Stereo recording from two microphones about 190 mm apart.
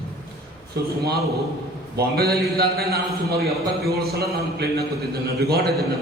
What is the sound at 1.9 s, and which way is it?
A man's voice, 55° right (ahead or behind).